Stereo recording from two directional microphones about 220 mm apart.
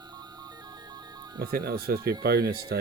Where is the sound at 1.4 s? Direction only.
45° right (ahead or behind).